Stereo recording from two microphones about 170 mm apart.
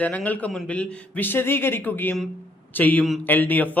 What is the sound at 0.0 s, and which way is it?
Speech, 10° left (ahead or behind).